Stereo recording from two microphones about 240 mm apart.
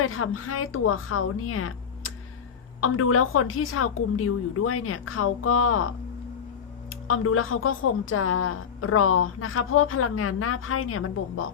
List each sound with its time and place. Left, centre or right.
0.0 s a woman's voice: left
2.8 s a woman's voice: left
7.1 s a woman's voice: left